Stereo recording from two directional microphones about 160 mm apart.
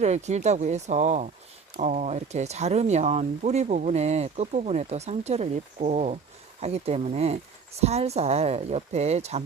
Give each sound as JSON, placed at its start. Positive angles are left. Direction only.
{"t": 0.0, "sound": "speech", "side_deg": -45}